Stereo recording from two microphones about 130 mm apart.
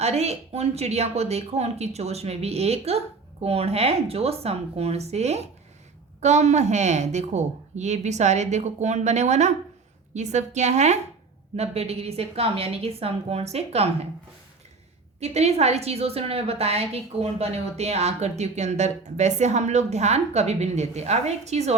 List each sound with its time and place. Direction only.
0.0 s a woman's voice: 55° right (ahead or behind)
15.2 s a woman's voice: 55° right (ahead or behind)